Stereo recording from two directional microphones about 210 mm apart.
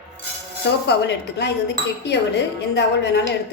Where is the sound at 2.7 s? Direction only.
55° left (ahead or behind).